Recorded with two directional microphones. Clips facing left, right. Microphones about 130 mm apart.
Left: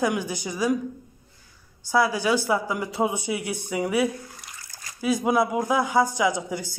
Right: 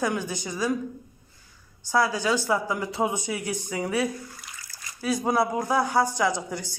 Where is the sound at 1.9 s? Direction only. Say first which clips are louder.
Left 2 dB; 10° left (ahead or behind).